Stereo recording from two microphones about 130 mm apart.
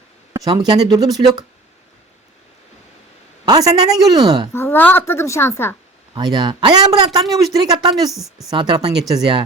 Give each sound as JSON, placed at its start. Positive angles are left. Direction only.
{"t": 0.3, "sound": "speech", "side_deg": -30}
{"t": 3.4, "sound": "a sound", "side_deg": -30}
{"t": 3.9, "sound": "speech", "side_deg": -30}
{"t": 4.5, "sound": "a woman's voice", "side_deg": 15}
{"t": 6.1, "sound": "speech", "side_deg": -35}
{"t": 8.1, "sound": "a woman's voice", "side_deg": 0}
{"t": 8.4, "sound": "speech", "side_deg": -35}